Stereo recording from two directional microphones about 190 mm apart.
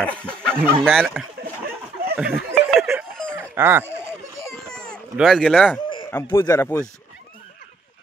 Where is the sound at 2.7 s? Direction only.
Centre (ahead or behind).